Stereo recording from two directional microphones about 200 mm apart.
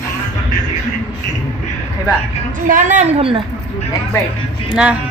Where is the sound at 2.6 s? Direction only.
40° right (ahead or behind).